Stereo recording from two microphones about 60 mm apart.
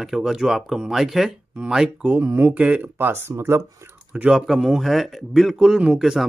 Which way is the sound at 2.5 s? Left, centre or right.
Right.